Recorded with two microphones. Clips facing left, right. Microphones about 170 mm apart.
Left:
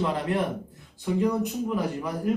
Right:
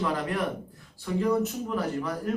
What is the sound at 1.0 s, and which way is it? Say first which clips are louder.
Speech: left 1 dB; 15° left (ahead or behind).